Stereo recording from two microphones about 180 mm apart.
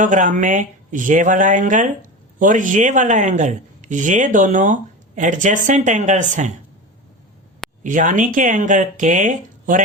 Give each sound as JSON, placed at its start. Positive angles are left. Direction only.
{"t": 0.0, "sound": "speech", "side_deg": -45}
{"t": 7.9, "sound": "speech", "side_deg": -45}